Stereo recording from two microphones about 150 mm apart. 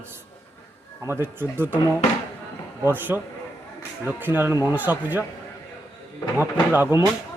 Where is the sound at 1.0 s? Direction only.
15° right (ahead or behind).